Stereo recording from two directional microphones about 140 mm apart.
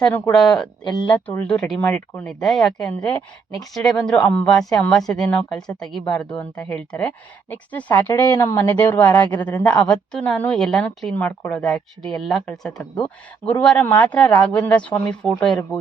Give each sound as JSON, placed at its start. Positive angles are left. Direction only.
{"t": 0.0, "sound": "speech", "side_deg": 5}
{"t": 0.9, "sound": "speech", "side_deg": 30}
{"t": 1.3, "sound": "speech", "side_deg": 10}